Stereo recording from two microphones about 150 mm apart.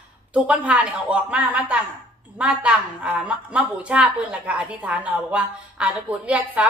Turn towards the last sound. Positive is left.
turn(degrees=-10)  # may be behind; listen again after turning